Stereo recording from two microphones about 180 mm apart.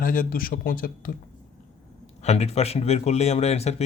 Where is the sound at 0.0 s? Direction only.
50° left (ahead or behind).